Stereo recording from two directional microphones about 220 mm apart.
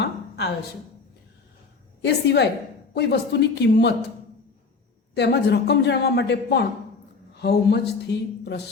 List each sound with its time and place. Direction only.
0.0 s a sound: 50° left (ahead or behind)
2.2 s speech: 50° left (ahead or behind)
5.1 s speech: 50° left (ahead or behind)